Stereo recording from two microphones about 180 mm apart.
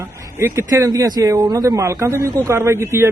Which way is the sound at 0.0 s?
15° right (ahead or behind).